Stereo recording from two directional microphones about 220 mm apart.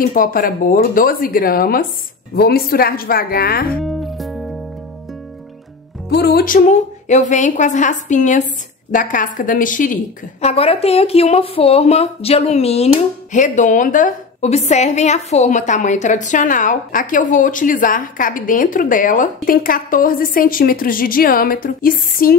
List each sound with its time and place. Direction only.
0.0 s a woman's voice: 40° left (ahead or behind)
3.8 s music: centre (ahead or behind)
6.0 s speech: 45° left (ahead or behind)